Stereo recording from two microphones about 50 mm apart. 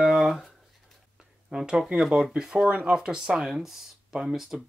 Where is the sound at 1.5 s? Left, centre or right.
Centre.